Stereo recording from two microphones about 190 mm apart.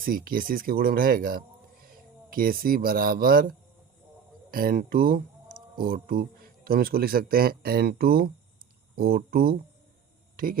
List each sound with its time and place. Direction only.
0.0 s speech: 50° right (ahead or behind)
4.5 s speech: 50° right (ahead or behind)